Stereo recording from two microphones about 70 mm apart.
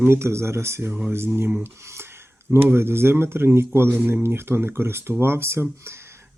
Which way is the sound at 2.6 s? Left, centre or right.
Right.